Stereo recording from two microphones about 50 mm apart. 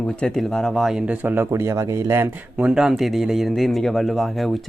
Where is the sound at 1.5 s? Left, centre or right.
Right.